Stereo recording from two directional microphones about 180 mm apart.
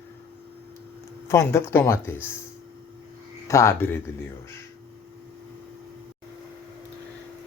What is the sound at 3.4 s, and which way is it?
Speech, 15° left (ahead or behind).